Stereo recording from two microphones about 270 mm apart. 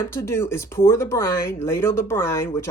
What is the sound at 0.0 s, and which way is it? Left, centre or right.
A man's voice, centre.